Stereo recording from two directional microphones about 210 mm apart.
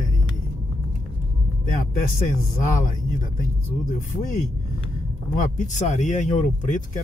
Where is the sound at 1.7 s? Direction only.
40° left (ahead or behind).